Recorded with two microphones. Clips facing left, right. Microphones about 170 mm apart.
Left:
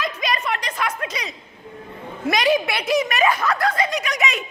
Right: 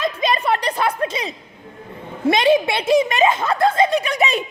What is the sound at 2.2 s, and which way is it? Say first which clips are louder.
Snicker: right 4 dB; 25° right (ahead or behind).